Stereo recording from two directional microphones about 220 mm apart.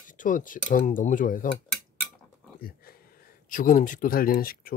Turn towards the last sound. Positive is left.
turn(degrees=40)  # may be behind; listen again after turning